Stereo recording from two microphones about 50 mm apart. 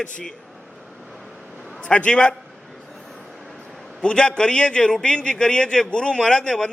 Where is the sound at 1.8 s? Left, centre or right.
Left.